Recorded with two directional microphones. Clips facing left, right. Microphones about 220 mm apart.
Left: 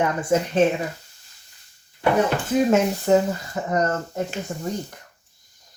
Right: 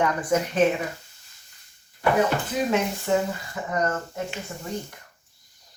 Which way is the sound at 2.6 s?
40° left (ahead or behind).